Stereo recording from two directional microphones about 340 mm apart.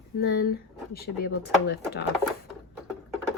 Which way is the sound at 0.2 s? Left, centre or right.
Left.